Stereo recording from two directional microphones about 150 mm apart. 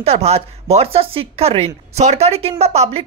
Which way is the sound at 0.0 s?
45° right (ahead or behind).